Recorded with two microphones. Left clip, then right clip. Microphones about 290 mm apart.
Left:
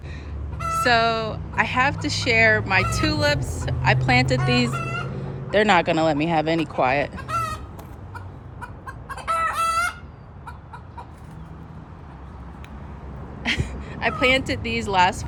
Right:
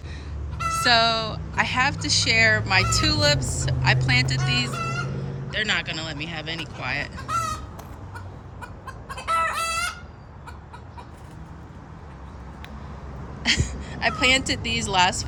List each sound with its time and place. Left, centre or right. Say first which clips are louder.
0.7 s a woman's voice: even; centre
7.2 s chicken: even; left
9.0 s chicken: even; centre
13.4 s a sound: right 2 dB; centre